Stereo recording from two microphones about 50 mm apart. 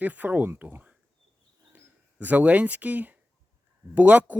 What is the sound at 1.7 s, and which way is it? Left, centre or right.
Speech, right.